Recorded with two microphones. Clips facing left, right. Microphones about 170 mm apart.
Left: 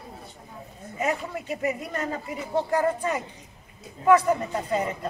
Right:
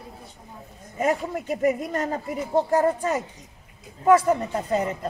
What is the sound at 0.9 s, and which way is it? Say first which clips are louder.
Speech: right 4 dB; 45° right (ahead or behind).